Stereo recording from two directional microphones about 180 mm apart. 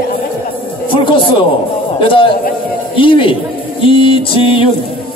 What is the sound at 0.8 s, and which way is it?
A man's voice, 30° left (ahead or behind).